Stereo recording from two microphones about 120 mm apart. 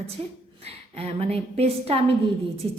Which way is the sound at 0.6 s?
55° right (ahead or behind).